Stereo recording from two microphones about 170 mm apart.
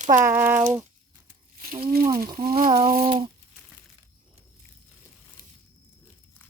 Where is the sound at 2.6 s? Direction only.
30° right (ahead or behind).